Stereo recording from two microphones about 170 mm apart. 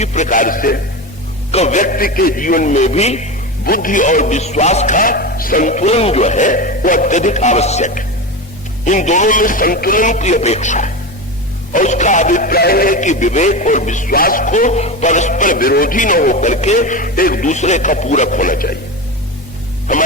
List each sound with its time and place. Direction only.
0.0 s speech: 45° left (ahead or behind)
1.5 s speech: 40° left (ahead or behind)
3.6 s speech: 55° left (ahead or behind)